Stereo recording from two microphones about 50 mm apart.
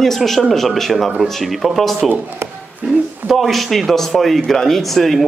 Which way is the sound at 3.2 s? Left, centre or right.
Centre.